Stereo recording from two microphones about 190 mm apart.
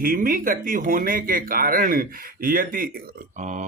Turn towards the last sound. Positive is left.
turn(degrees=-40)  # may be behind; listen again after turning